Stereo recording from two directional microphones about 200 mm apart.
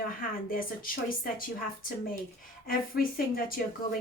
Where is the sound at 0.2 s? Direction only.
45° left (ahead or behind).